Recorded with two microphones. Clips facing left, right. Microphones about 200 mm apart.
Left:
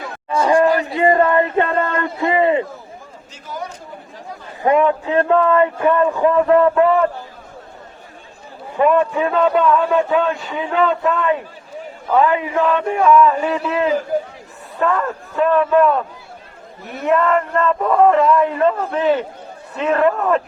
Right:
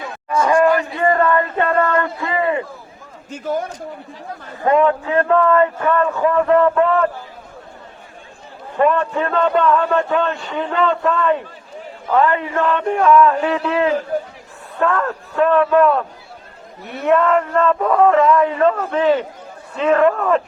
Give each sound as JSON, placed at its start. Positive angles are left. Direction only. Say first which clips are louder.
{"t": 0.3, "sound": "chatter", "louder": "even", "side_deg": 30}
{"t": 0.6, "sound": "a sound", "louder": "even", "side_deg": 35}
{"t": 0.9, "sound": "a sound", "louder": "left 2 dB", "side_deg": 20}
{"t": 3.3, "sound": "a man's voice", "louder": "right 8 dB", "side_deg": -55}
{"t": 4.6, "sound": "a man's voice", "louder": "even", "side_deg": 15}
{"t": 8.8, "sound": "a man's voice", "louder": "left 2 dB", "side_deg": 5}